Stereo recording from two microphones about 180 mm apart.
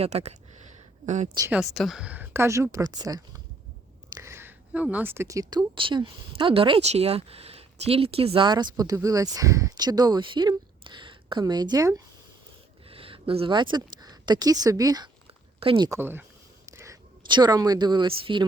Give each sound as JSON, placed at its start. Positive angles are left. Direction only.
{"t": 0.0, "sound": "speech", "side_deg": -35}
{"t": 1.5, "sound": "speech", "side_deg": -5}
{"t": 12.9, "sound": "speech", "side_deg": -30}
{"t": 15.3, "sound": "a sound", "side_deg": -30}
{"t": 15.9, "sound": "speech", "side_deg": -10}
{"t": 16.6, "sound": "a sound", "side_deg": -15}
{"t": 18.2, "sound": "speech", "side_deg": -25}